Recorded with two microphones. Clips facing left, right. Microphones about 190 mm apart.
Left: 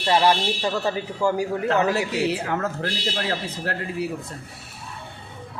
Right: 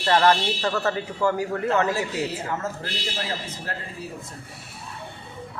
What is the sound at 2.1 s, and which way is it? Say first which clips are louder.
Speech: left 4 dB; 70° left (ahead or behind).